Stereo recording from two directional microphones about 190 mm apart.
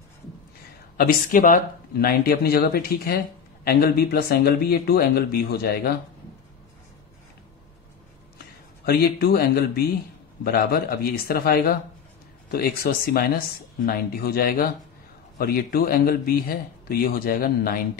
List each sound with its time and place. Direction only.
0.9 s speech: 50° left (ahead or behind)
8.8 s speech: 55° left (ahead or behind)